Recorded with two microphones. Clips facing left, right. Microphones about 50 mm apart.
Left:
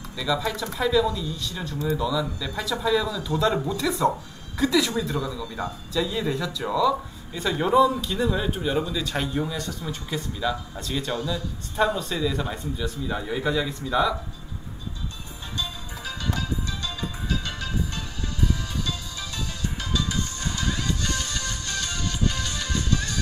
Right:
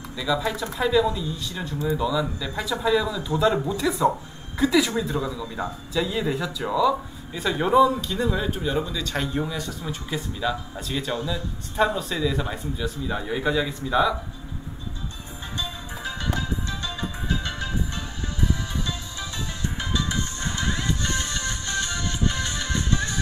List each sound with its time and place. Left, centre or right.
0.2 s speech: centre
15.5 s music: right